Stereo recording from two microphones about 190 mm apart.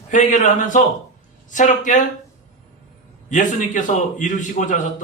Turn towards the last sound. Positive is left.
turn(degrees=40)  # may be behind; listen again after turning